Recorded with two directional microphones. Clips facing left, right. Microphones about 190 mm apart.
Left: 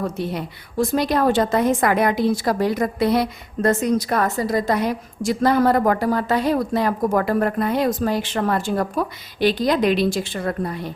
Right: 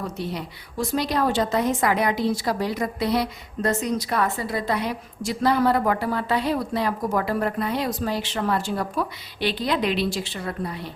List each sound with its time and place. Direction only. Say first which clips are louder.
0.2 s a woman's voice: left 4 dB; 50° left (ahead or behind)